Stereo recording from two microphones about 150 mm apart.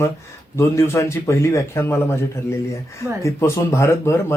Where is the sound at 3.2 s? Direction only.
20° left (ahead or behind).